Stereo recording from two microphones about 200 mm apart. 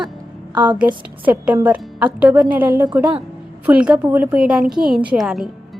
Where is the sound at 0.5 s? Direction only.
20° right (ahead or behind).